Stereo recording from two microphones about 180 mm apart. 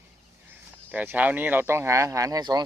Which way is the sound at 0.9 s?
10° right (ahead or behind).